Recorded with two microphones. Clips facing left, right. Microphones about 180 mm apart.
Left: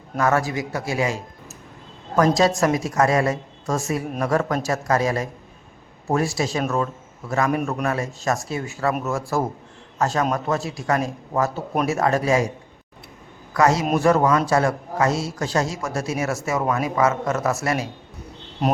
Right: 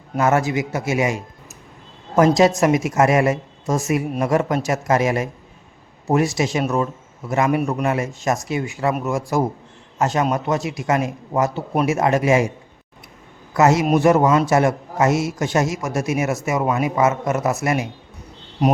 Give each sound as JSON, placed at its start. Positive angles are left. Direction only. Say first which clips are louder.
{"t": 0.2, "sound": "a man's voice", "louder": "right 3 dB", "side_deg": -25}
{"t": 13.5, "sound": "a man's voice", "louder": "right 3 dB", "side_deg": -20}